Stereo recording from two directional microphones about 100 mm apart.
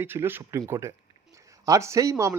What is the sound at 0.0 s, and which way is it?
A man's voice, 20° right (ahead or behind).